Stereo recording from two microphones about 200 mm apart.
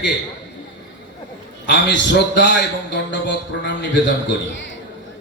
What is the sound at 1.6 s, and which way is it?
A man's voice, 60° left (ahead or behind).